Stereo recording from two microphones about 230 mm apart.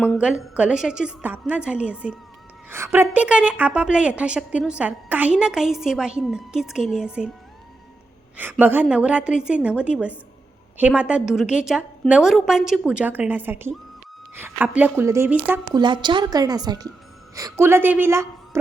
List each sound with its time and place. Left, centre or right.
0.0 s a woman's voice: centre
8.4 s a woman's voice: centre